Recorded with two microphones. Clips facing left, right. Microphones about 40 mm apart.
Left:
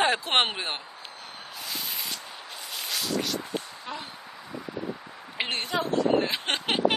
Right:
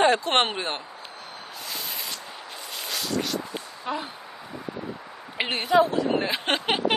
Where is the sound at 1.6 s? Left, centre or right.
Centre.